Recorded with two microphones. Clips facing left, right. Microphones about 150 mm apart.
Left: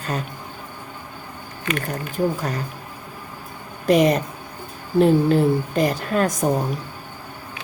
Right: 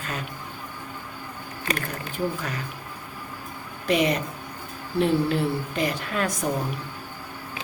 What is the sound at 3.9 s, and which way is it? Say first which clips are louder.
A woman's voice: left 6 dB; 40° left (ahead or behind).